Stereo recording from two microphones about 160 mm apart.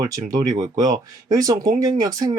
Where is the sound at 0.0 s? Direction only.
25° right (ahead or behind).